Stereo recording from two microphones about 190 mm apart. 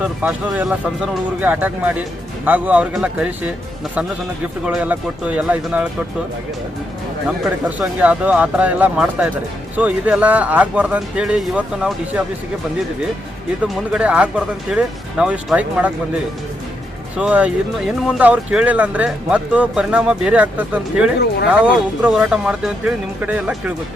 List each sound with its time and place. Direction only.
0.0 s speech: 10° right (ahead or behind)
4.6 s speech: 5° right (ahead or behind)
7.8 s speech: 5° right (ahead or behind)
13.9 s speech: 5° right (ahead or behind)
17.2 s speech: 5° right (ahead or behind)
21.2 s speech: 60° left (ahead or behind)
22.0 s speech: 5° right (ahead or behind)